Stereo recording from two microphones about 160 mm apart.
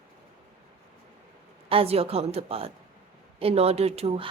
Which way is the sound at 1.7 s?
35° right (ahead or behind).